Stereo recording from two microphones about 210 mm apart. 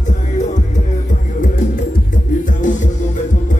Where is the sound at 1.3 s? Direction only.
40° left (ahead or behind).